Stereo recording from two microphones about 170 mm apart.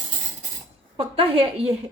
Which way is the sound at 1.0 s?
35° right (ahead or behind).